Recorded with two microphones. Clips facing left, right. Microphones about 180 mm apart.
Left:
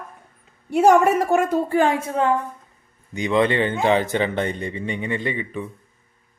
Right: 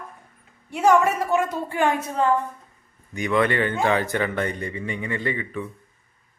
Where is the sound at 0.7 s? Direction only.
45° left (ahead or behind).